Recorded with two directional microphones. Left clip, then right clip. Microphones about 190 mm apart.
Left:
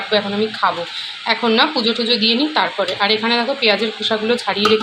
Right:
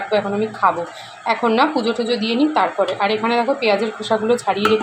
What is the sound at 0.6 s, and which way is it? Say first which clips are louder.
Speech: right 2 dB; 5° right (ahead or behind).